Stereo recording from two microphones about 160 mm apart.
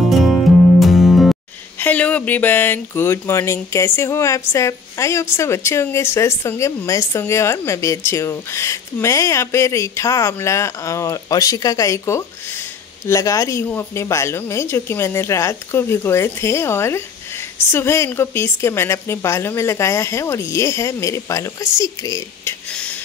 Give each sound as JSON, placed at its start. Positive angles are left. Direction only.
{"t": 0.1, "sound": "music", "side_deg": 0}
{"t": 1.8, "sound": "speech", "side_deg": 10}